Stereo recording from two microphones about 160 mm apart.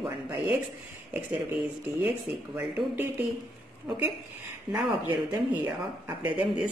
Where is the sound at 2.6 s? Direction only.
5° right (ahead or behind).